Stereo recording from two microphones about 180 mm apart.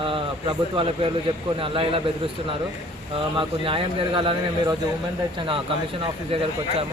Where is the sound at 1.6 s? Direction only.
30° right (ahead or behind).